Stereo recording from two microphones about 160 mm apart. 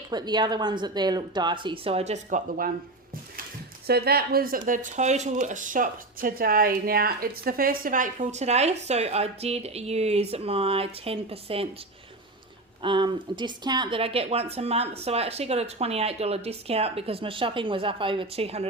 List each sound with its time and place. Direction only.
0.1 s speech: 25° right (ahead or behind); by 2.7 s 55° right (ahead or behind)
3.8 s speech: 80° right; by 11.7 s 35° right (ahead or behind)
12.8 s speech: 30° right (ahead or behind)